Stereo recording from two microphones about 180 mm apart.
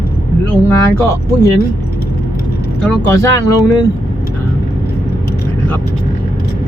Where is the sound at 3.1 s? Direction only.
15° left (ahead or behind).